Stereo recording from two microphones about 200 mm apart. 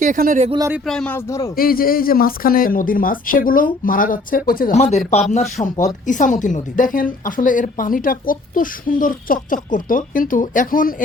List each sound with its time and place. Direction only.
0.0 s speech: 40° right (ahead or behind)
0.5 s speech: 15° right (ahead or behind)
0.9 s speech: 5° left (ahead or behind)
1.5 s a woman's voice: 45° left (ahead or behind)
4.8 s a woman's voice: 35° left (ahead or behind)